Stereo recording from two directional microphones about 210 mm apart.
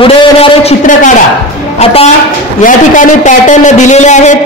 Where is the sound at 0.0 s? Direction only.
25° left (ahead or behind).